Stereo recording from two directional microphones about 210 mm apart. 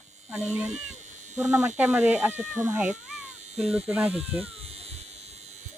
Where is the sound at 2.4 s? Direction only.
35° right (ahead or behind).